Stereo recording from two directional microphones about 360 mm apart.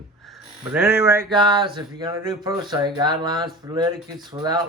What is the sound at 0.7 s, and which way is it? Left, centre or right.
A man's voice, centre.